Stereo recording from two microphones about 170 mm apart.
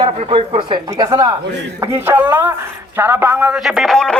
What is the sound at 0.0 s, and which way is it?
Speech, 30° right (ahead or behind).